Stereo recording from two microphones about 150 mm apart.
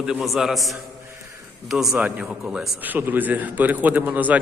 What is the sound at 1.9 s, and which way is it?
A man's voice, 10° right (ahead or behind).